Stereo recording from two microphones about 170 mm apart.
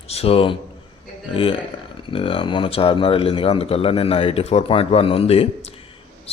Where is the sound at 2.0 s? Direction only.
30° left (ahead or behind).